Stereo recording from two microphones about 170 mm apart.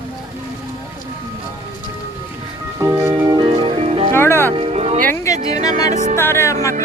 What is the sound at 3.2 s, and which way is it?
Music, 30° right (ahead or behind).